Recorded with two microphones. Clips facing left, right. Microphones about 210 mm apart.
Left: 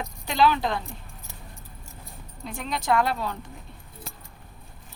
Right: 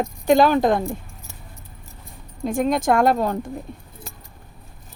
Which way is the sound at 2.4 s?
50° right (ahead or behind).